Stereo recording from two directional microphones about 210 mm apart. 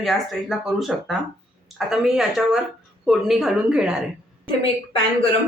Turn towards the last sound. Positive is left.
turn(degrees=25)  # may be behind; listen again after turning